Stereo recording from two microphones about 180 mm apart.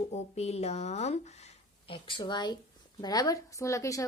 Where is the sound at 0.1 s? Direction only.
35° left (ahead or behind).